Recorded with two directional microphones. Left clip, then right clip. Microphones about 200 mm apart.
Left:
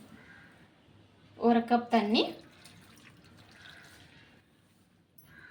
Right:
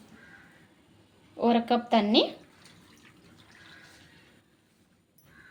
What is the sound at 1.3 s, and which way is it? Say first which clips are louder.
Speech: right 1 dB; 55° right (ahead or behind).